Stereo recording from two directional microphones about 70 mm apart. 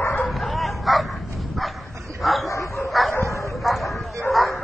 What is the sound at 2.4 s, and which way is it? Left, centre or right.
Bow-wow, left.